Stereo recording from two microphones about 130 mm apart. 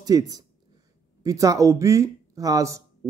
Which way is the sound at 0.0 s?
30° right (ahead or behind).